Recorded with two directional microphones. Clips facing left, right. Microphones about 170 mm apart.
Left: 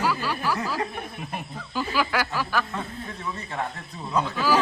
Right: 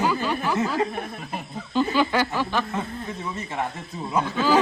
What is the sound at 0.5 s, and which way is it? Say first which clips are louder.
Speech: right 5 dB; 20° right (ahead or behind).